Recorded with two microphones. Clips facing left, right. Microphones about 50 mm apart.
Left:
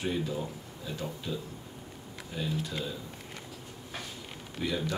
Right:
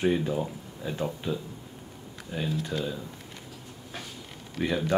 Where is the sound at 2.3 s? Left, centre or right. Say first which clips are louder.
Right 3 dB; right.